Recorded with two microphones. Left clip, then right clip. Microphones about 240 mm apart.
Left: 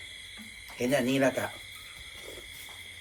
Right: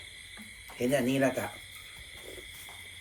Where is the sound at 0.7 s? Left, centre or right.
Centre.